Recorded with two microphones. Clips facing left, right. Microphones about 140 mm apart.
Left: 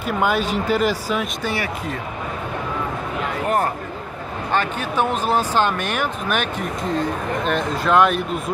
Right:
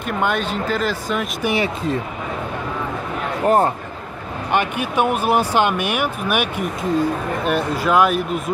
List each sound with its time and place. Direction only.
0.0 s speech: 5° left (ahead or behind)
1.4 s speech: 15° right (ahead or behind)
3.4 s speech: 30° right (ahead or behind)
4.5 s speech: 15° right (ahead or behind)